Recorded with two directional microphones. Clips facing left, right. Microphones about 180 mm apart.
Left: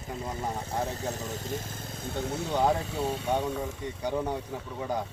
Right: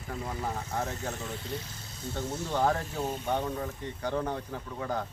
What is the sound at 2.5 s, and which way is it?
Speech, 15° left (ahead or behind).